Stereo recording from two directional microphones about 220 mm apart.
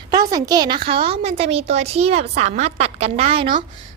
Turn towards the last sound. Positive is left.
turn(degrees=-25)  # may be behind; listen again after turning